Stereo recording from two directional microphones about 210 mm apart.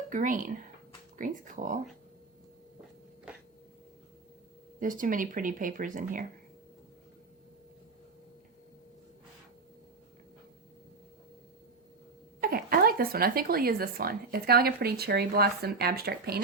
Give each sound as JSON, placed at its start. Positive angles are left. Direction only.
{"t": 0.1, "sound": "speech", "side_deg": -40}
{"t": 3.3, "sound": "a sound", "side_deg": -5}
{"t": 4.8, "sound": "speech", "side_deg": -40}
{"t": 12.4, "sound": "speech", "side_deg": -45}